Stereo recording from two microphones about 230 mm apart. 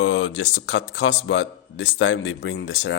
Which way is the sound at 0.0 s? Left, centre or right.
Left.